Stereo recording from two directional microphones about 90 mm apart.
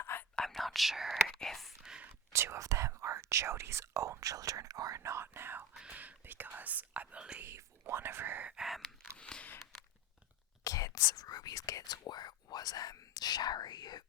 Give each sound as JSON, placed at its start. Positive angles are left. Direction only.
{"t": 0.0, "sound": "whispering", "side_deg": 25}
{"t": 0.3, "sound": "whispering", "side_deg": 0}
{"t": 2.3, "sound": "speech", "side_deg": -30}
{"t": 5.7, "sound": "speech", "side_deg": -15}
{"t": 7.4, "sound": "speech", "side_deg": -30}
{"t": 8.4, "sound": "gasp", "side_deg": -5}
{"t": 9.0, "sound": "a sound", "side_deg": 10}
{"t": 10.6, "sound": "speech", "side_deg": 40}